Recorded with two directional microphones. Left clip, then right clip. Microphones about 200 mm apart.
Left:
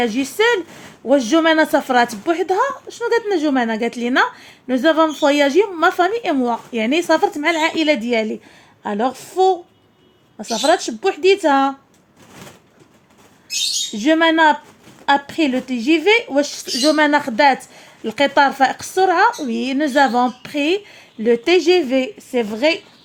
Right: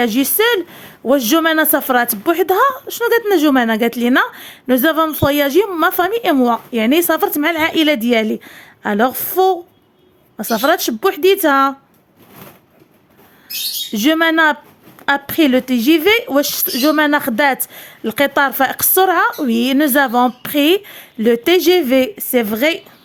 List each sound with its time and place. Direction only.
0.0 s speech: 35° right (ahead or behind)
1.0 s speech: 35° right (ahead or behind)
13.9 s speech: 40° right (ahead or behind)